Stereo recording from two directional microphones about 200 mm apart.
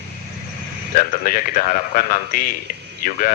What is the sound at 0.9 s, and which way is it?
Speech, 45° left (ahead or behind).